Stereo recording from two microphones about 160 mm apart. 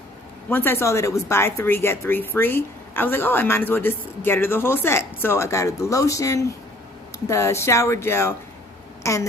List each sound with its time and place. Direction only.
0.5 s a woman's voice: 15° left (ahead or behind)